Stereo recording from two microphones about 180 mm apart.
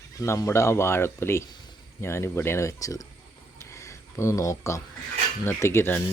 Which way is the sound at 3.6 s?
15° left (ahead or behind).